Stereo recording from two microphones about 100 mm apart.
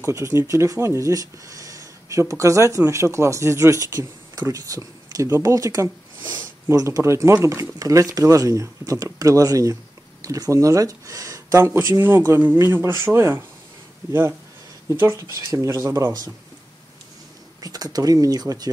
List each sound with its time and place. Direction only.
0.0 s speech: 25° right (ahead or behind)
14.9 s speech: 25° right (ahead or behind)
17.6 s speech: 40° right (ahead or behind)